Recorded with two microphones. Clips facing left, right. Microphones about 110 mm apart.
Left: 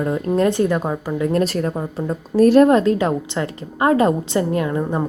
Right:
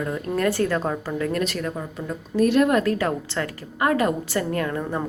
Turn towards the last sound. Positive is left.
turn(degrees=20)  # may be behind; listen again after turning